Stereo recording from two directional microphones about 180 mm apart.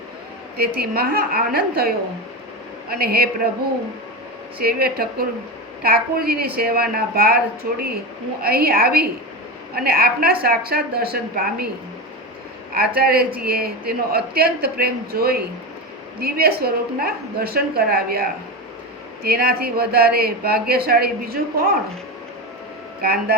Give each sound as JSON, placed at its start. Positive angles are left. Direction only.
{"t": 0.5, "sound": "speech", "side_deg": -60}
{"t": 4.6, "sound": "speech", "side_deg": -60}
{"t": 12.7, "sound": "speech", "side_deg": -55}